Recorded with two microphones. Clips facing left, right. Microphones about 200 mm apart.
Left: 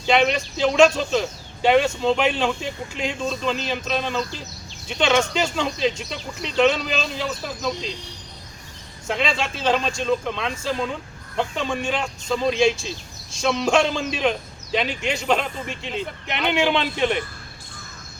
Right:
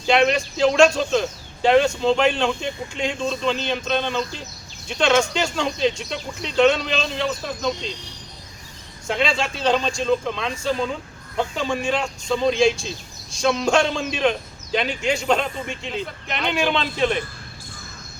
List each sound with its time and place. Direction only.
0.0 s speech: centre (ahead or behind)
9.0 s speech: centre (ahead or behind)